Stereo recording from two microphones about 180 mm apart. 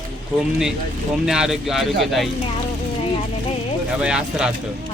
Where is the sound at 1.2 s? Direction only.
5° right (ahead or behind).